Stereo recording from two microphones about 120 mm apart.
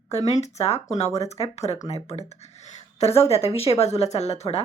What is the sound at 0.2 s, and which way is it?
Speech, 65° left (ahead or behind).